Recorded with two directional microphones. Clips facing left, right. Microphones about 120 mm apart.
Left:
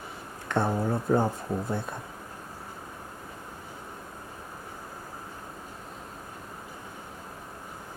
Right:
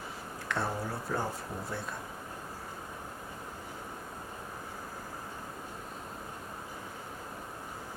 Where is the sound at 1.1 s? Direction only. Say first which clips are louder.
Left 10 dB; 30° left (ahead or behind).